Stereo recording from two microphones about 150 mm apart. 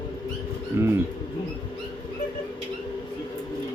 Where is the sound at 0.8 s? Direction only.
15° right (ahead or behind).